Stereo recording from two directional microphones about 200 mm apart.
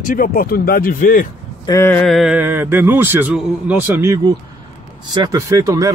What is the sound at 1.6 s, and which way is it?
Speech, 15° left (ahead or behind).